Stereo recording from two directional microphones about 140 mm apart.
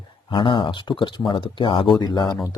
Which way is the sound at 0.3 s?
35° left (ahead or behind).